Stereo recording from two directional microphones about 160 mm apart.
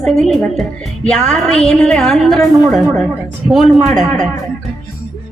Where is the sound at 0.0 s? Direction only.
5° left (ahead or behind).